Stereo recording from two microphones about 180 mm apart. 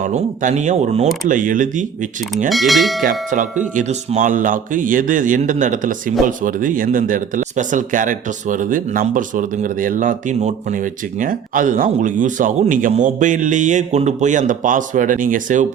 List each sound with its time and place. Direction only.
0.0 s a man's voice: 40° right (ahead or behind)
2.5 s speech: centre (ahead or behind)
3.0 s a man's voice: 45° right (ahead or behind)